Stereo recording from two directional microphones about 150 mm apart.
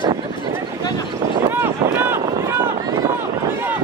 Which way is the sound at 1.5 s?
15° right (ahead or behind).